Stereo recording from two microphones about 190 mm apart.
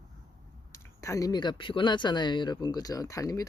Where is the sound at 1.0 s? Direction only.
15° left (ahead or behind).